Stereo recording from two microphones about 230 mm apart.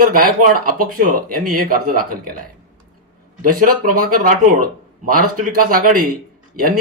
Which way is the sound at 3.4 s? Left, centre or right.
Right.